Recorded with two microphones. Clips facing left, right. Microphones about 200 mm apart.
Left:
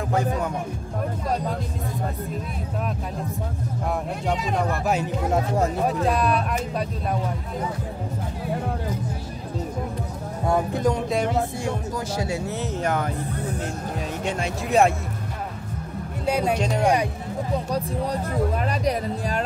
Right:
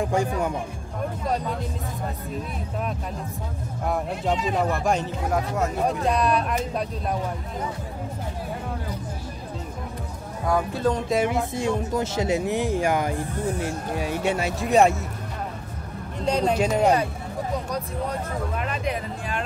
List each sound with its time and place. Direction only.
0.1 s speech: 10° right (ahead or behind)
3.8 s speech: centre (ahead or behind)
10.4 s speech: 20° left (ahead or behind)
11.1 s speech: 5° right (ahead or behind)
11.5 s speech: 20° right (ahead or behind); by 15.0 s centre (ahead or behind)
16.3 s speech: 10° left (ahead or behind)
17.6 s speech: 35° left (ahead or behind)